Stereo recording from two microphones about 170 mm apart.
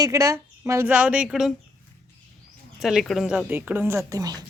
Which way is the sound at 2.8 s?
Centre (ahead or behind).